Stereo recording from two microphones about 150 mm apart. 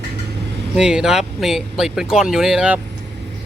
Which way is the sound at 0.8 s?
5° right (ahead or behind).